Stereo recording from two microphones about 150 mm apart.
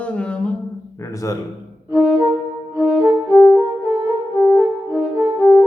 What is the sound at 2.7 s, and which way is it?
Music, 5° right (ahead or behind).